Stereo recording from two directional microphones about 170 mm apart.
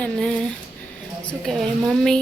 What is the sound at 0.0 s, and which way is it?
A woman's voice, 5° left (ahead or behind).